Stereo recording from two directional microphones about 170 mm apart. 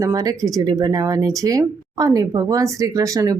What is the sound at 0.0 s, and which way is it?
Speech, 20° right (ahead or behind).